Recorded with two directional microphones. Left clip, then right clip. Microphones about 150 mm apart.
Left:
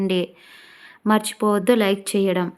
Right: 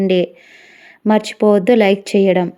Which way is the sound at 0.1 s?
25° right (ahead or behind).